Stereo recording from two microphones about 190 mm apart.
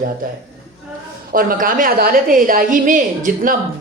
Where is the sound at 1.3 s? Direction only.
50° right (ahead or behind).